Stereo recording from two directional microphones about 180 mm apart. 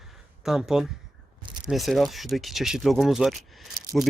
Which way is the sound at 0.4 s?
Centre (ahead or behind).